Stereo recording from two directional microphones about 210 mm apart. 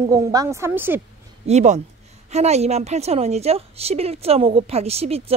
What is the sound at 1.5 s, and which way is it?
A woman's voice, 30° right (ahead or behind).